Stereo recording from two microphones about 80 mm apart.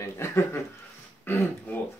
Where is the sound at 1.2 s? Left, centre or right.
Left.